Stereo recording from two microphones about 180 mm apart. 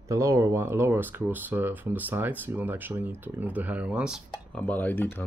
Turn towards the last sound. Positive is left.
turn(degrees=10)  # may be behind; listen again after turning